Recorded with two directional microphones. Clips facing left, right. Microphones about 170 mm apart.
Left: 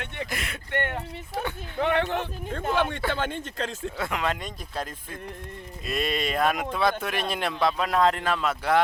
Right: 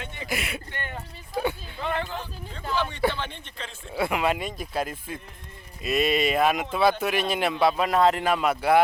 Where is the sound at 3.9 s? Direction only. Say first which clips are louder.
Right 6 dB; 10° right (ahead or behind).